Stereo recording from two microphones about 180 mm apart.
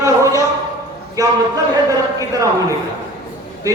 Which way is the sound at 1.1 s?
20° right (ahead or behind).